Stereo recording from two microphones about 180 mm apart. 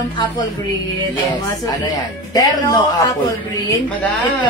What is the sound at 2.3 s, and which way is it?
A woman's voice, 20° left (ahead or behind).